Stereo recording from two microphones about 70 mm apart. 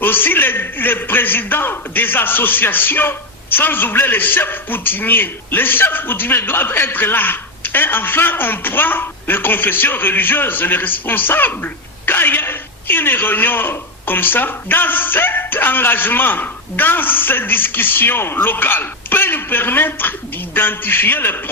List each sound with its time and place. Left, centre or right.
0.0 s a man's voice: left